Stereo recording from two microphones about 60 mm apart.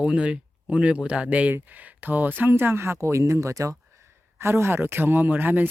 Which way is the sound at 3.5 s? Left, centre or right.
Right.